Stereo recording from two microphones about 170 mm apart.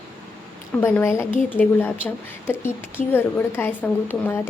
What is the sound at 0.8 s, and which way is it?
A woman's voice, 10° left (ahead or behind).